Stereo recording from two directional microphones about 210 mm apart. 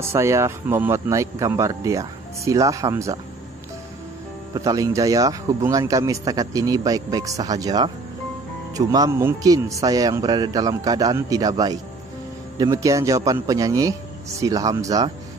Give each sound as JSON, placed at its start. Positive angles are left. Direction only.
{"t": 0.0, "sound": "speech", "side_deg": -15}
{"t": 4.6, "sound": "speech", "side_deg": -15}